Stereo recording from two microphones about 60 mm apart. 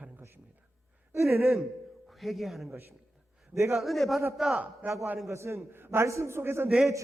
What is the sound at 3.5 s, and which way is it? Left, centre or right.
Speech, right.